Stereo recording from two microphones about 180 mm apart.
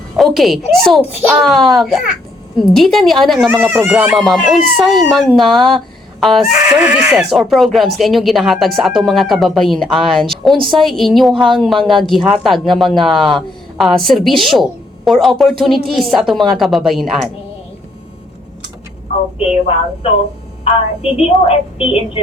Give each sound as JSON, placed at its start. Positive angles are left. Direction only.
{"t": 0.2, "sound": "speech", "side_deg": 0}
{"t": 19.4, "sound": "a woman's voice", "side_deg": 35}